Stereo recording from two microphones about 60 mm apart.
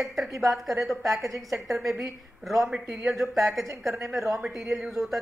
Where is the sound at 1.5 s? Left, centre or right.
Centre.